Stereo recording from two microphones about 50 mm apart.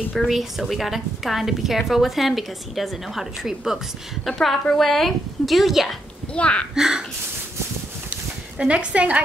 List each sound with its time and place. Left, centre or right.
0.1 s a woman's voice: centre
4.3 s a woman's voice: centre
6.3 s speech: left
6.7 s speech: centre
8.1 s a sound: right